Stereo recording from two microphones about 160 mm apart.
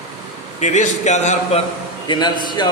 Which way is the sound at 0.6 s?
45° left (ahead or behind).